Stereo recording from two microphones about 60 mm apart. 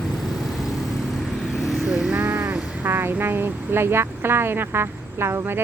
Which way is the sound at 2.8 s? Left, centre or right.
Right.